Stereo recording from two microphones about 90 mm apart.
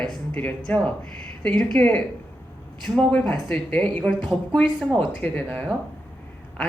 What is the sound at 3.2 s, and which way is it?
Speech, 5° left (ahead or behind).